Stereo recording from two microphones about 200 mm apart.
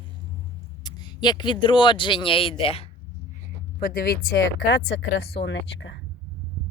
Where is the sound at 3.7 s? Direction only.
45° left (ahead or behind); by 6.0 s 65° left (ahead or behind).